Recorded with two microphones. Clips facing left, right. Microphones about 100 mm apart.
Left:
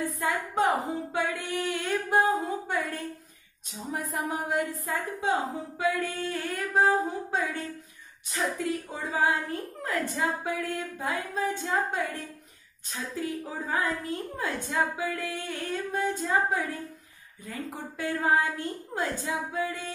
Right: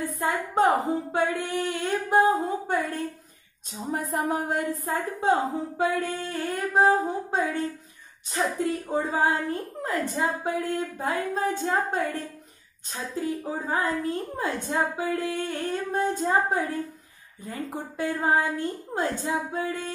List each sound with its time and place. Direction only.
0.2 s a woman's voice: 30° right (ahead or behind)